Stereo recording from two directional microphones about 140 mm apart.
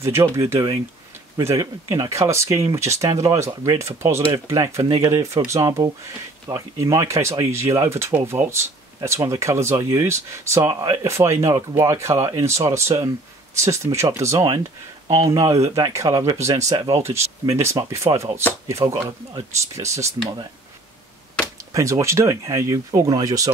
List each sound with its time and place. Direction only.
0.0 s speech: 20° right (ahead or behind)
4.8 s speech: 35° right (ahead or behind)
5.1 s speech: 20° right (ahead or behind)
21.7 s speech: 20° right (ahead or behind)